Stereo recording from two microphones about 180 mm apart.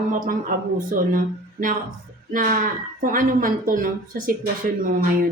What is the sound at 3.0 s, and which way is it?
Speech, 50° right (ahead or behind).